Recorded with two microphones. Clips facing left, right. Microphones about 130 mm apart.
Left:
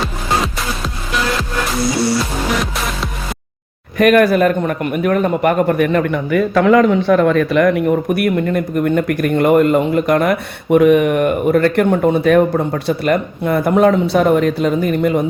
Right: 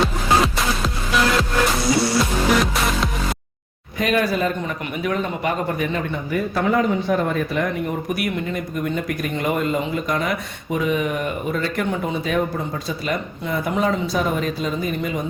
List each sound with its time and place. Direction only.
2.6 s music: centre (ahead or behind)
3.9 s speech: 65° left (ahead or behind)